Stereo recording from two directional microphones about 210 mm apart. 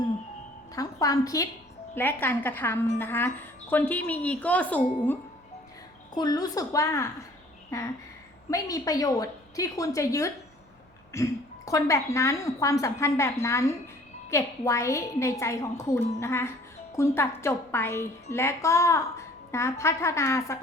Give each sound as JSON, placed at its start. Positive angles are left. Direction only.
{"t": 0.8, "sound": "a woman's voice", "side_deg": 15}
{"t": 6.1, "sound": "a woman's voice", "side_deg": 15}